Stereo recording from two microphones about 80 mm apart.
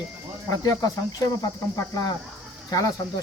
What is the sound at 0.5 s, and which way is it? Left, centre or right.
Speech, left.